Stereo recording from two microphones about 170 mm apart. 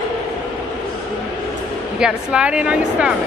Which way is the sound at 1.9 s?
5° right (ahead or behind).